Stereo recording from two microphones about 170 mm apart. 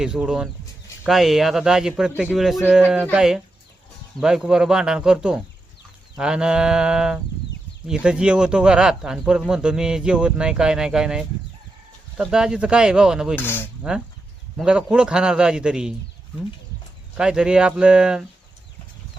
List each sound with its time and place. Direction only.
0.0 s speech: 5° right (ahead or behind)
13.3 s speech: 10° left (ahead or behind)
14.5 s speech: 5° right (ahead or behind)
17.2 s speech: 5° right (ahead or behind)